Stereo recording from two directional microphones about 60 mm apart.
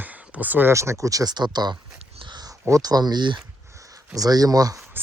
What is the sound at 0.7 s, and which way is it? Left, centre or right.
Speech, right.